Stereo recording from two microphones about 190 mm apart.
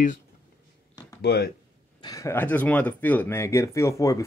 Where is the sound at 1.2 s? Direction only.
55° left (ahead or behind).